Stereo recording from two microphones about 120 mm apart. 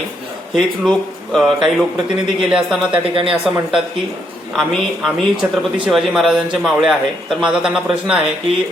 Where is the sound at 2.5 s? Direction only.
5° right (ahead or behind).